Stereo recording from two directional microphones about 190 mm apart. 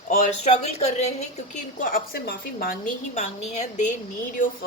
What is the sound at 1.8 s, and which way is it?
A woman's voice, 50° left (ahead or behind).